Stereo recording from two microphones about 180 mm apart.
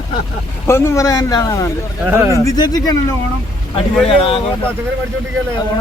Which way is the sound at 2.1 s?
15° right (ahead or behind).